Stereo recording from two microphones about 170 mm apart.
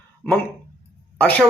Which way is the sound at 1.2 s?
10° left (ahead or behind).